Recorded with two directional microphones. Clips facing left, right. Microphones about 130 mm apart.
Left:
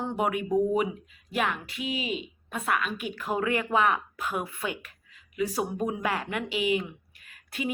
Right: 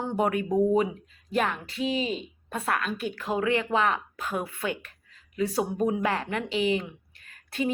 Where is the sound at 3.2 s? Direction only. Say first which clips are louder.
Right 1 dB; 25° right (ahead or behind).